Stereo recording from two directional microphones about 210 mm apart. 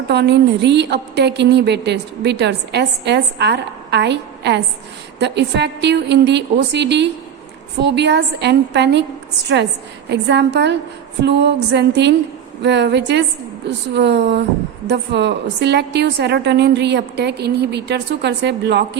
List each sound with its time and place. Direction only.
0.1 s a woman's voice: 55° right (ahead or behind)
10.1 s a woman's voice: 55° right (ahead or behind)